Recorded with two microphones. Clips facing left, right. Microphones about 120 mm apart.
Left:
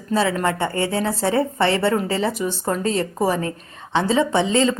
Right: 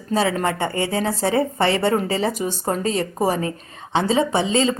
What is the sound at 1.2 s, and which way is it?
Speech, 40° left (ahead or behind).